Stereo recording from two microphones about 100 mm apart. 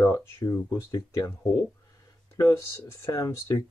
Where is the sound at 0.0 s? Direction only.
30° left (ahead or behind).